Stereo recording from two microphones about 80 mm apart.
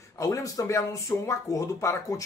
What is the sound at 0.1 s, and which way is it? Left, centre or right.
Speech, left.